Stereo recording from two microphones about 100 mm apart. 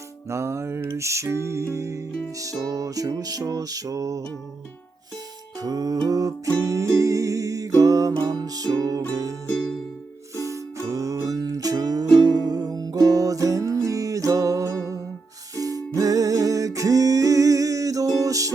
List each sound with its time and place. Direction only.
0.3 s music: 30° right (ahead or behind)
5.5 s music: 40° right (ahead or behind)
9.5 s music: 5° left (ahead or behind)
10.8 s music: 35° right (ahead or behind)